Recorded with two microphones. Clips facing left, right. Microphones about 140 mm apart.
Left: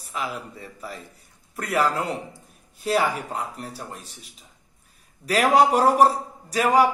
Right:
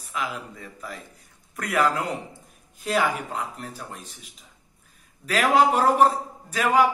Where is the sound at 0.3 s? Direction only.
10° left (ahead or behind).